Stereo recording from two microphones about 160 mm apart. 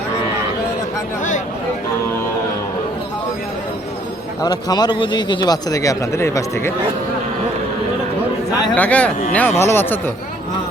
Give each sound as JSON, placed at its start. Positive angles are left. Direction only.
{"t": 4.4, "sound": "a man's voice", "side_deg": 25}
{"t": 8.7, "sound": "speech", "side_deg": 10}